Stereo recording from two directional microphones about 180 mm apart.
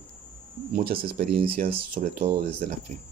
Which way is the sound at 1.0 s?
60° right (ahead or behind).